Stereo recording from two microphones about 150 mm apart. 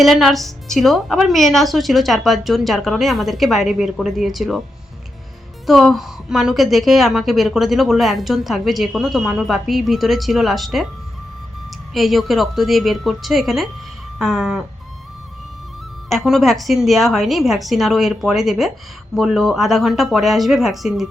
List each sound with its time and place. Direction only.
0.0 s a woman's voice: centre (ahead or behind)
5.6 s a woman's voice: centre (ahead or behind)
11.9 s a woman's voice: centre (ahead or behind)
16.0 s a woman's voice: centre (ahead or behind)